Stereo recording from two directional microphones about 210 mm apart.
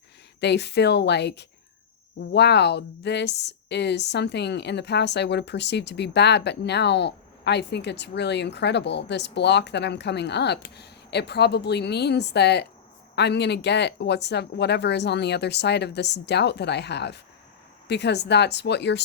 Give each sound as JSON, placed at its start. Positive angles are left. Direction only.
{"t": 0.3, "sound": "speech", "side_deg": 55}